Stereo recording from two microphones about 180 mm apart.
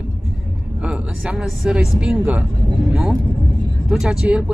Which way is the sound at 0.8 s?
5° right (ahead or behind).